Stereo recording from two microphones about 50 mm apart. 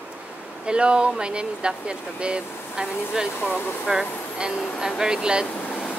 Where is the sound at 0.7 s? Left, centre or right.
Centre.